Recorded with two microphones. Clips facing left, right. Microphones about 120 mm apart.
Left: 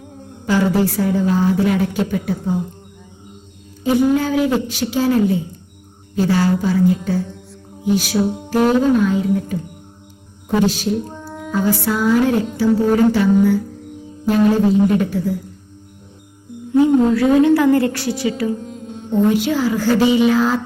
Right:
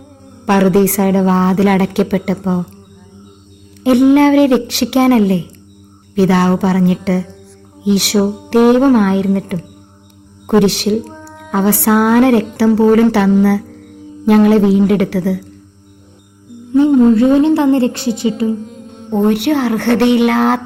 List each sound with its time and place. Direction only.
0.4 s a woman's voice: 70° right (ahead or behind)
3.8 s a woman's voice: 75° right (ahead or behind)
11.0 s a sound: centre (ahead or behind)
11.5 s a woman's voice: 75° right (ahead or behind)
16.8 s a woman's voice: 25° right (ahead or behind)
18.5 s music: centre (ahead or behind)
19.3 s a woman's voice: 65° right (ahead or behind)